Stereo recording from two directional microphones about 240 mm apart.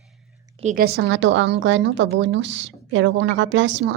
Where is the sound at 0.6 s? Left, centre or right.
Right.